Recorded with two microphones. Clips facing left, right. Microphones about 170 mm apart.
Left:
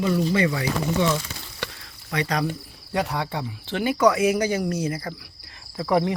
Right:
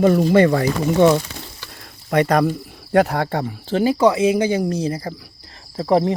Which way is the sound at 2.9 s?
55° right (ahead or behind).